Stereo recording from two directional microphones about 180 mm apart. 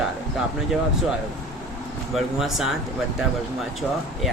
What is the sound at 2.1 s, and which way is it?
Speech, centre (ahead or behind).